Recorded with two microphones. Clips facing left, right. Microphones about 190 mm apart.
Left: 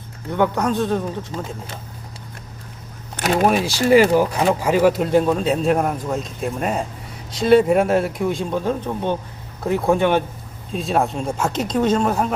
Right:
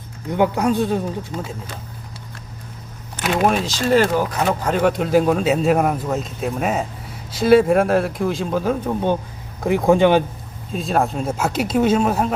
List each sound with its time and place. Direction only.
0.3 s speech: 15° right (ahead or behind)
3.4 s speech: 5° left (ahead or behind); by 10.2 s 15° right (ahead or behind)
10.7 s speech: centre (ahead or behind)